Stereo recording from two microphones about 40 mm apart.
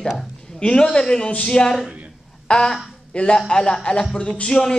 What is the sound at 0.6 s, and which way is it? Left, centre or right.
A man's voice, left.